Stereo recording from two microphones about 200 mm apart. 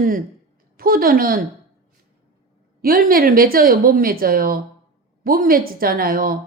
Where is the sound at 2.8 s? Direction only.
45° right (ahead or behind).